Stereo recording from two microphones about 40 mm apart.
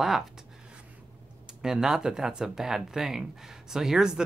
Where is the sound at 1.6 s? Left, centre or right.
Centre.